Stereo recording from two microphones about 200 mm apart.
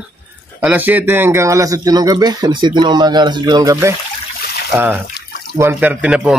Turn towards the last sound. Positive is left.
turn(degrees=-5)  # may be behind; listen again after turning